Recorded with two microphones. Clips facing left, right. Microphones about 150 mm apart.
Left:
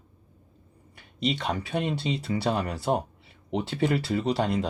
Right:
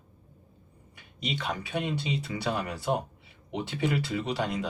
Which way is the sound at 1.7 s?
35° left (ahead or behind).